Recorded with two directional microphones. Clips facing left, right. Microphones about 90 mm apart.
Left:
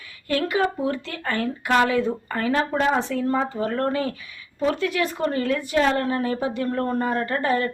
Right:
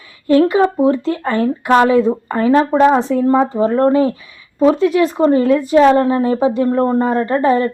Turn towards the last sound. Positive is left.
turn(degrees=-25)  # may be behind; listen again after turning